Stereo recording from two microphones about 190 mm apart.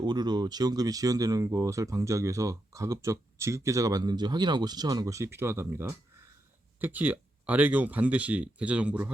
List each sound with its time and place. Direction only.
0.0 s speech: 20° right (ahead or behind); by 9.0 s 5° right (ahead or behind)